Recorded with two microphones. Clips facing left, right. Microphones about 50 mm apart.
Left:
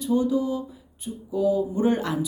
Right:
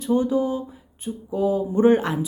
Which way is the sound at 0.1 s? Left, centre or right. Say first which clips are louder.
Right 2 dB; right.